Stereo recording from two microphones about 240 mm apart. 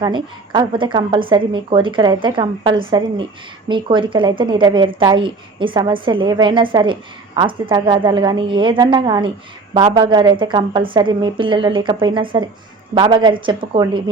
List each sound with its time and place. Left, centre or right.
0.0 s speech: centre